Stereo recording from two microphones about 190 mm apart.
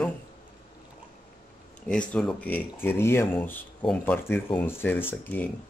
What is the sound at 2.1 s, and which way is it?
Speech, 5° left (ahead or behind).